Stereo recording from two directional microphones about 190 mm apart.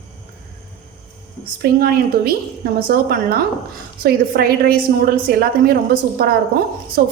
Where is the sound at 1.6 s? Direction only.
50° right (ahead or behind).